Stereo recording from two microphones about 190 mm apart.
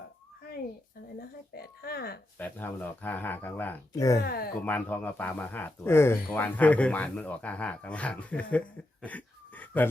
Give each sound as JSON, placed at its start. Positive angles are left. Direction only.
{"t": 1.2, "sound": "speech", "side_deg": 55}
{"t": 2.4, "sound": "speech", "side_deg": 10}
{"t": 4.2, "sound": "speech", "side_deg": 55}
{"t": 4.6, "sound": "speech", "side_deg": 10}